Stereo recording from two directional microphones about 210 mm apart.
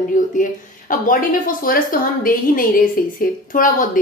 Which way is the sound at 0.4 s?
40° left (ahead or behind).